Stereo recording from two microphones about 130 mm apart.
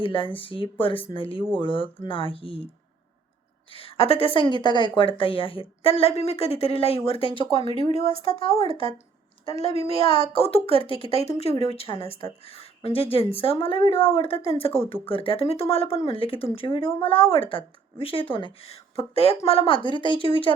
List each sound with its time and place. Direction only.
0.0 s a woman's voice: 40° left (ahead or behind)
3.7 s a woman's voice: 50° left (ahead or behind)
7.9 s speech: 45° right (ahead or behind)
8.4 s a woman's voice: 50° left (ahead or behind)
8.6 s speech: 40° right (ahead or behind)
9.5 s a woman's voice: 55° left (ahead or behind)